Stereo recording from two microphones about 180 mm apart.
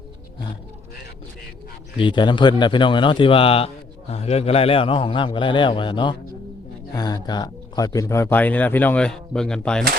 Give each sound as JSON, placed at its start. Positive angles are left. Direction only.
{"t": 2.0, "sound": "a man's voice", "side_deg": 25}